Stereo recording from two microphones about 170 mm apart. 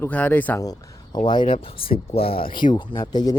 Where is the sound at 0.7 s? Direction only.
25° left (ahead or behind).